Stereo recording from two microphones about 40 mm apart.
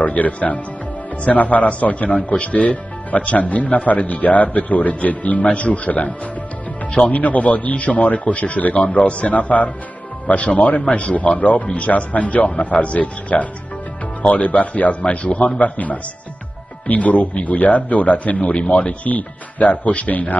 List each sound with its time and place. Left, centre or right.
0.0 s speech: left
7.1 s speech: left